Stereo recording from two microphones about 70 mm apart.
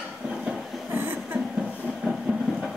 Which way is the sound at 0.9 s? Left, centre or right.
Right.